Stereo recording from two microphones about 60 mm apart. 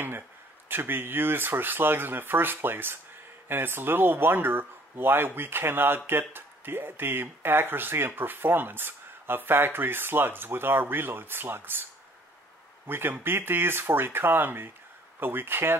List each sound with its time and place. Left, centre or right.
0.7 s speech: right